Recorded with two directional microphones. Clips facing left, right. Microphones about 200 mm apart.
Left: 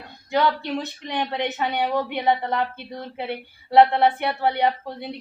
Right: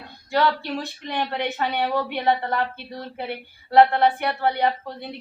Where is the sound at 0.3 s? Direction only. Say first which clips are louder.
Even; 20° left (ahead or behind).